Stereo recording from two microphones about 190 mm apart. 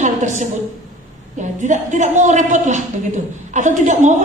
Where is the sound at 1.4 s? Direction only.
40° right (ahead or behind).